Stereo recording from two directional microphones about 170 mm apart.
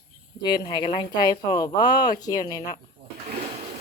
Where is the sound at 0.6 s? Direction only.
25° left (ahead or behind).